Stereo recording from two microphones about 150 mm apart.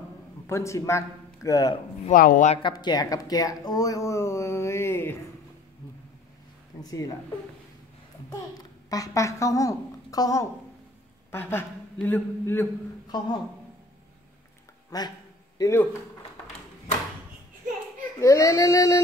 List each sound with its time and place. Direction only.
0.5 s speech: 20° left (ahead or behind)
2.0 s speech: 65° left (ahead or behind)
2.7 s speech: 25° left (ahead or behind)
6.8 s speech: 25° left (ahead or behind)
8.3 s a child's voice: 25° left (ahead or behind)
13.1 s speech: 30° left (ahead or behind)
14.9 s a sound: 25° left (ahead or behind)
18.2 s speech: 20° left (ahead or behind)